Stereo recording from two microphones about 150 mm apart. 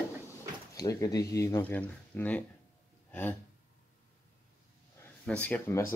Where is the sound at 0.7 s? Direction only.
25° left (ahead or behind).